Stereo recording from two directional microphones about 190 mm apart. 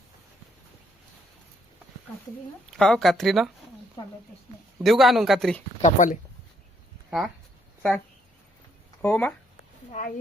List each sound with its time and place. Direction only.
2.7 s speech: centre (ahead or behind)
4.8 s speech: centre (ahead or behind)
5.8 s speech: 40° left (ahead or behind)
7.8 s speech: 5° left (ahead or behind)
9.9 s speech: 40° left (ahead or behind)